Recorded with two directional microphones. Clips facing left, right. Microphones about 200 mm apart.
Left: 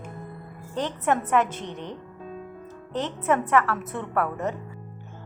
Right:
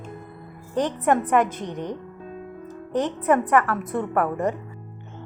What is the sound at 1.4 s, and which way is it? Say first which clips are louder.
Speech: right 3 dB; 10° right (ahead or behind).